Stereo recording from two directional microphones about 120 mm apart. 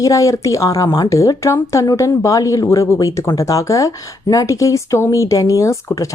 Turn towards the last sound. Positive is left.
turn(degrees=25)  # may be behind; listen again after turning